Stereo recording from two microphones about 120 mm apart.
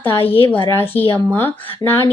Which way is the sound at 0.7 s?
20° left (ahead or behind).